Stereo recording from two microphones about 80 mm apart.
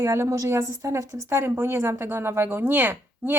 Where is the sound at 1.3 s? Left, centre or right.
Right.